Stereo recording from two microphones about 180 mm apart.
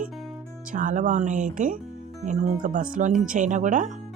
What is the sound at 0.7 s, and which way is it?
Speech, 45° right (ahead or behind).